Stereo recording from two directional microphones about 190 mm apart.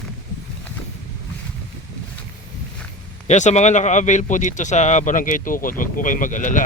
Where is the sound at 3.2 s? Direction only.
40° left (ahead or behind).